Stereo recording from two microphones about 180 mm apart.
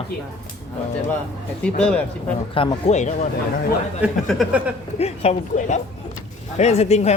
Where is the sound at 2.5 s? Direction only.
30° left (ahead or behind).